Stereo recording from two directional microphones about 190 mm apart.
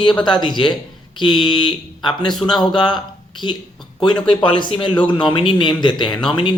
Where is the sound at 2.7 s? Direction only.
25° left (ahead or behind).